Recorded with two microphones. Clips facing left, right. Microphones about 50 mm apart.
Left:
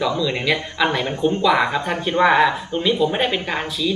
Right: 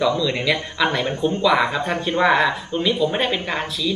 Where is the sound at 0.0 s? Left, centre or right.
Centre.